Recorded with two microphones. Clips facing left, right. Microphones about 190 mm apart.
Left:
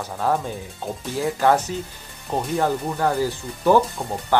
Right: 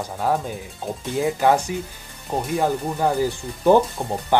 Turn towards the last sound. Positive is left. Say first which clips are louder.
# right 1 dB
turn(degrees=-15)  # may be behind; listen again after turning